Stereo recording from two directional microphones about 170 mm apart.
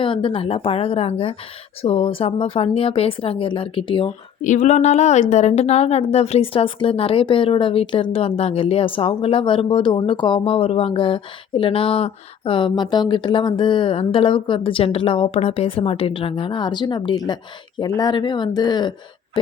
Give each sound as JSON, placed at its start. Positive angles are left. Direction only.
{"t": 0.0, "sound": "speech", "side_deg": 30}
{"t": 4.4, "sound": "speech", "side_deg": 45}